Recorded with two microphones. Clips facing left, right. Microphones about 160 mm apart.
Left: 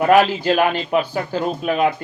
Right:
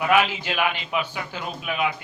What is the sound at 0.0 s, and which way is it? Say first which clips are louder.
A man's voice: left 7 dB; 40° left (ahead or behind).